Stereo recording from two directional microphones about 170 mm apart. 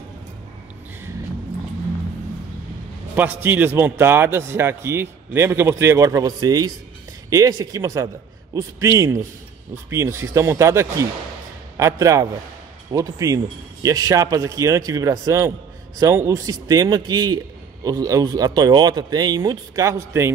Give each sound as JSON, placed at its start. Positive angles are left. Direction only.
{"t": 3.2, "sound": "a man's voice", "side_deg": -10}